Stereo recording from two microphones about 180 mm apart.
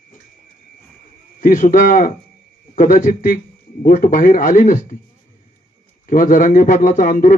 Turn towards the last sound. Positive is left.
turn(degrees=50)  # may be behind; listen again after turning